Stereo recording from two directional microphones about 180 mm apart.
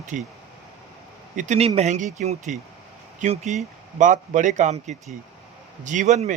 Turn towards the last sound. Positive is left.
turn(degrees=-40)  # may be behind; listen again after turning